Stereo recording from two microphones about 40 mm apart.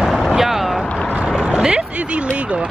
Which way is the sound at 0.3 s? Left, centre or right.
Centre.